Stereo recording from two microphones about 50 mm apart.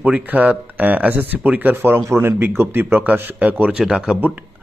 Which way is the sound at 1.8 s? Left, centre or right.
Right.